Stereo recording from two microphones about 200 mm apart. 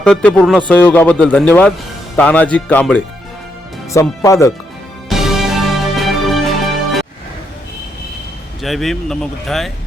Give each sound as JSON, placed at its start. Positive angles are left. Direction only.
{"t": 0.0, "sound": "a man's voice", "side_deg": 5}
{"t": 5.0, "sound": "music", "side_deg": 0}
{"t": 8.6, "sound": "speech", "side_deg": 0}